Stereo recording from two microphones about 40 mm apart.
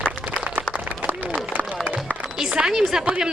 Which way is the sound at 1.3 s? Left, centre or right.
Right.